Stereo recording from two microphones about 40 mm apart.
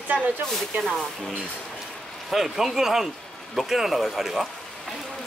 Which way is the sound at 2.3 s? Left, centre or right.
Centre.